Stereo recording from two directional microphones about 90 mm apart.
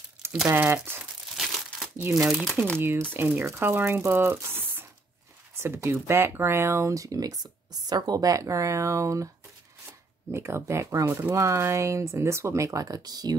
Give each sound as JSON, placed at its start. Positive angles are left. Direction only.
{"t": 0.5, "sound": "speech", "side_deg": -25}
{"t": 1.3, "sound": "crumpling", "side_deg": 0}
{"t": 2.1, "sound": "speech", "side_deg": 0}
{"t": 2.8, "sound": "speech", "side_deg": -25}
{"t": 10.3, "sound": "speech", "side_deg": -30}